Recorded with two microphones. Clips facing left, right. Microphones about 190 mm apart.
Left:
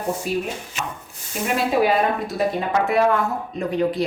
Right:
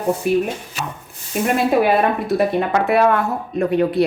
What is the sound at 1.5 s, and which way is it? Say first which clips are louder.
A woman's voice: right 2 dB; 60° right (ahead or behind).